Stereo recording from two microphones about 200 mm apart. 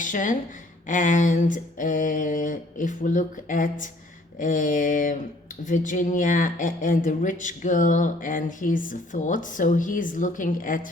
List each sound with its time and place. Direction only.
0.0 s speech: 40° left (ahead or behind)